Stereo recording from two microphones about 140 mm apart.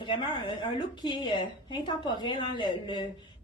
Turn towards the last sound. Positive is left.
turn(degrees=35)  # may be behind; listen again after turning